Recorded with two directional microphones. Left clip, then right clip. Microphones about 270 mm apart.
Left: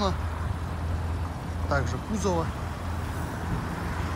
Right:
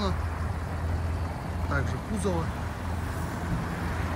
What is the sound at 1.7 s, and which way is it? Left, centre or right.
Speech, centre.